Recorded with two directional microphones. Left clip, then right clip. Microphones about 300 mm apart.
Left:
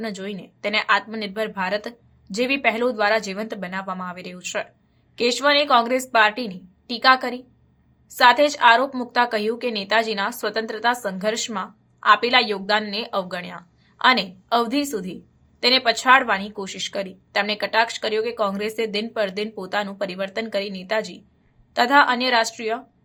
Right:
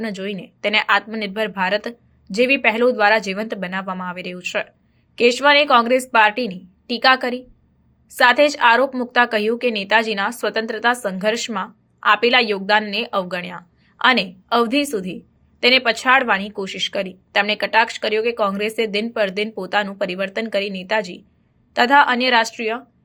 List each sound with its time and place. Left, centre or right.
0.0 s a woman's voice: centre